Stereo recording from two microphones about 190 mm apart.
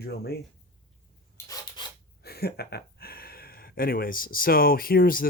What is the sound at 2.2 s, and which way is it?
Speech, 55° left (ahead or behind).